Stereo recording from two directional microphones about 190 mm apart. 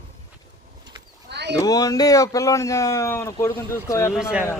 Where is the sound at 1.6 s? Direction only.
20° left (ahead or behind).